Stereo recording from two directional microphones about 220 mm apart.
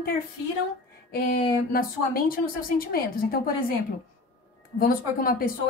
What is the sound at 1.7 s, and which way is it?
A woman's voice, 40° left (ahead or behind).